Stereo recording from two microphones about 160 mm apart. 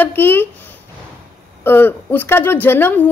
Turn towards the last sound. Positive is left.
turn(degrees=15)  # may be behind; listen again after turning